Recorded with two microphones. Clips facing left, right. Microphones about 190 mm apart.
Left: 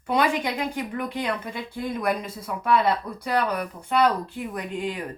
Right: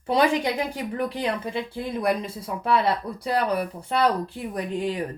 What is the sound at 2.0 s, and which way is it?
A woman's voice, 30° right (ahead or behind).